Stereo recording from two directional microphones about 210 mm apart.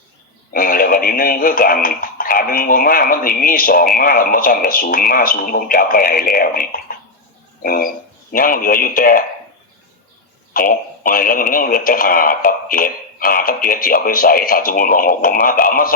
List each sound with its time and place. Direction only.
0.5 s a man's voice: 40° left (ahead or behind)
10.5 s speech: 40° left (ahead or behind)